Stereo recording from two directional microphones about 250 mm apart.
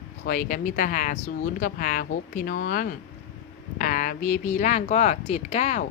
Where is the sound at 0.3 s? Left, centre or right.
Left.